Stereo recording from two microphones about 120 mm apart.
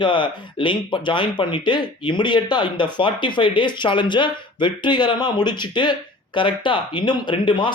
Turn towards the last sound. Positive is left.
turn(degrees=40)  # may be behind; listen again after turning